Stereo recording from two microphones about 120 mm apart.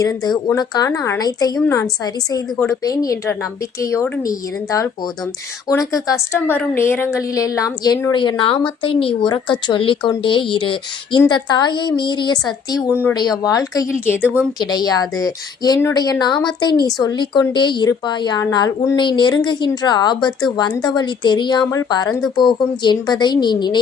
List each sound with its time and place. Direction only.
0.0 s a woman's voice: 30° left (ahead or behind)
0.9 s a woman's voice: 20° left (ahead or behind)
5.6 s a woman's voice: 30° left (ahead or behind)
8.1 s a woman's voice: 40° left (ahead or behind)
14.2 s speech: 10° right (ahead or behind)
14.6 s a woman's voice: 35° left (ahead or behind)